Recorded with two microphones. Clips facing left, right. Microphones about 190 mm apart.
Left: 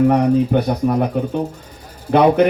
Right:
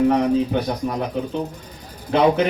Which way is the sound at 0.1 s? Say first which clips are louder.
Left 4 dB; 55° left (ahead or behind).